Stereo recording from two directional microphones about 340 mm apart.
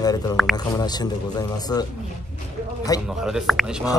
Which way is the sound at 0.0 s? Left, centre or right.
Centre.